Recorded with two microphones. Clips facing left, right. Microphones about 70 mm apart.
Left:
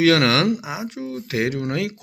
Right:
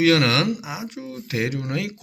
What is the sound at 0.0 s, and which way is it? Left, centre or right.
Speech, left.